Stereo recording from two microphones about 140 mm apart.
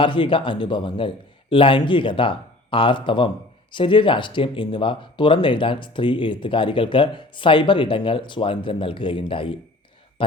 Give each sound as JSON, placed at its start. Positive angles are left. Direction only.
{"t": 0.0, "sound": "a man's voice", "side_deg": 35}